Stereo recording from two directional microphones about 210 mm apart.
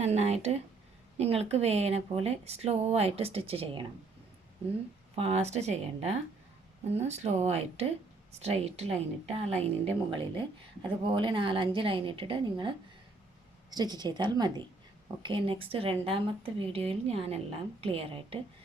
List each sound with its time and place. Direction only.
0.0 s speech: 30° right (ahead or behind)
5.1 s speech: 30° right (ahead or behind)